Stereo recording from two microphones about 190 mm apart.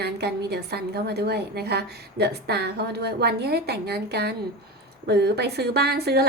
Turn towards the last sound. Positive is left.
turn(degrees=-60)  # may be behind; listen again after turning